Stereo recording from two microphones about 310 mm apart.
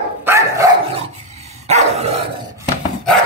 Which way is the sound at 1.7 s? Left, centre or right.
Right.